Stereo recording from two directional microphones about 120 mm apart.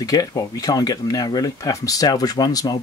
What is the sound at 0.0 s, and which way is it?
Speech, 30° left (ahead or behind).